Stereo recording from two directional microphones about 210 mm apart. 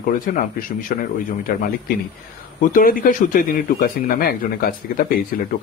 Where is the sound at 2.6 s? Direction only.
40° left (ahead or behind).